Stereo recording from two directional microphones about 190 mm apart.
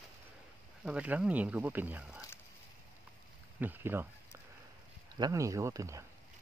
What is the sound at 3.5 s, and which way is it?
Speech, 10° right (ahead or behind).